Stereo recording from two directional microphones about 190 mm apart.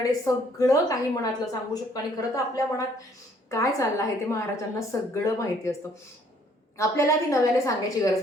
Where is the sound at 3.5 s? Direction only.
15° left (ahead or behind).